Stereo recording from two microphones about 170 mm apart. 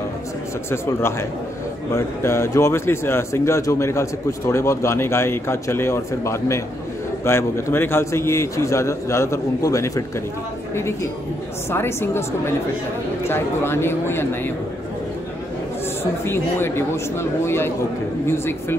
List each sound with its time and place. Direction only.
0.7 s speech: 15° left (ahead or behind)
11.7 s speech: 15° left (ahead or behind)
16.0 s speech: 15° left (ahead or behind)